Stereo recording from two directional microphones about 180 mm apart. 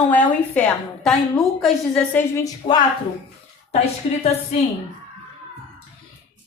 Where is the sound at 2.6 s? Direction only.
45° left (ahead or behind).